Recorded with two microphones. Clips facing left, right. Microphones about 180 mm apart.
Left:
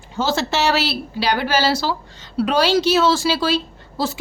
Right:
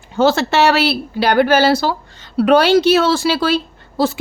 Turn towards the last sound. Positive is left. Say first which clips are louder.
# right 6 dB
turn(degrees=-60)  # may be behind; listen again after turning